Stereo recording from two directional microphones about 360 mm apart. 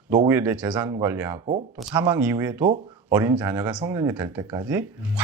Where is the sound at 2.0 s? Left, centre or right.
Centre.